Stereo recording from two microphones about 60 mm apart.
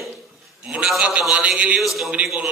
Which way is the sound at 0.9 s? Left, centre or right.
Centre.